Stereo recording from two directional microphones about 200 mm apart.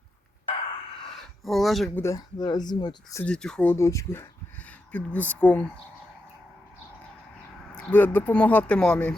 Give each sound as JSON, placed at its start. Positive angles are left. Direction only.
{"t": 1.5, "sound": "speech", "side_deg": 0}
{"t": 2.0, "sound": "speech", "side_deg": 15}
{"t": 3.2, "sound": "speech", "side_deg": 5}
{"t": 7.8, "sound": "speech", "side_deg": 5}